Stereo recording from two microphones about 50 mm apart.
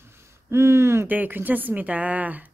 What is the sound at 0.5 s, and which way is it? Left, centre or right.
Speech, right.